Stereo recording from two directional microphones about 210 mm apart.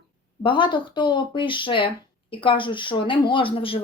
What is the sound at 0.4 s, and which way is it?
Speech, 25° left (ahead or behind).